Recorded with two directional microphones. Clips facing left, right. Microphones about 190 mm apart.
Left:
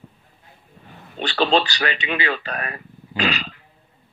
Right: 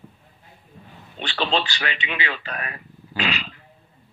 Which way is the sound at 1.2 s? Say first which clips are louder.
Left 5 dB; 40° left (ahead or behind).